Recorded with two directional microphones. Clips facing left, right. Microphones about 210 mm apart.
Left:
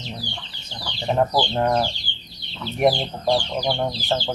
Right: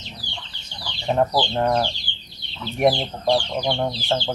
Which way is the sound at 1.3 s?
5° left (ahead or behind).